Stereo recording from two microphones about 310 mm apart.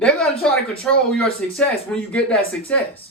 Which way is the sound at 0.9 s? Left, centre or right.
Centre.